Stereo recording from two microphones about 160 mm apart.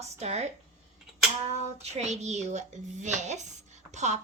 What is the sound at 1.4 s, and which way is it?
Child singing, 45° right (ahead or behind).